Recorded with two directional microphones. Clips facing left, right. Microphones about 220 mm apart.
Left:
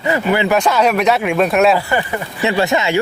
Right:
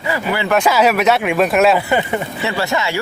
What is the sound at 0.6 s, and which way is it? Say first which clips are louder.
A man's voice: even; 5° right (ahead or behind).